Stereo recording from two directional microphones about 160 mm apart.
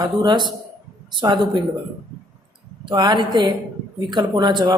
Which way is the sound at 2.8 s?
30° right (ahead or behind).